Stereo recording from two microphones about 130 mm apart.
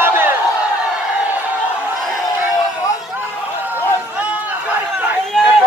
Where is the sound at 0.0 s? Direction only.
15° right (ahead or behind).